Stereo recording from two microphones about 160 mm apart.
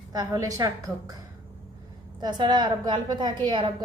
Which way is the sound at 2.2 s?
25° right (ahead or behind).